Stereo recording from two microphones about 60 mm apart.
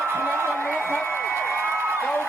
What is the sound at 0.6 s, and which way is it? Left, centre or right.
Speech, left.